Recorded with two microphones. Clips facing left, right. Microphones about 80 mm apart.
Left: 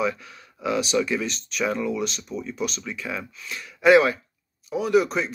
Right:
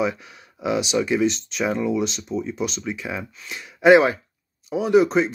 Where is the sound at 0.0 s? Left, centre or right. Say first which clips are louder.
Right 2 dB; right.